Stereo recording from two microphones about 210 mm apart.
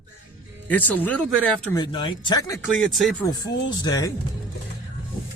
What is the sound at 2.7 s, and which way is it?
Speech, centre (ahead or behind).